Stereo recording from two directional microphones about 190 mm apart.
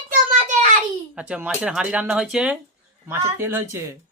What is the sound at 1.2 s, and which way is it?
Speech, 5° right (ahead or behind).